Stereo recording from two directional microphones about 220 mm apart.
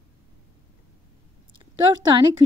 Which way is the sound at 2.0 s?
20° right (ahead or behind).